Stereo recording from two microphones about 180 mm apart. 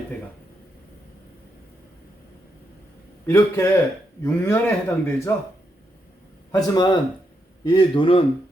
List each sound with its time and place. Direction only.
3.2 s a man's voice: 15° left (ahead or behind)
6.5 s a man's voice: 20° left (ahead or behind)